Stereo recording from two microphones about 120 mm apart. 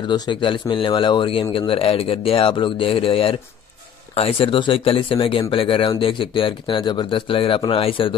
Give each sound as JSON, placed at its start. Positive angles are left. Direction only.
{"t": 0.1, "sound": "speech", "side_deg": 45}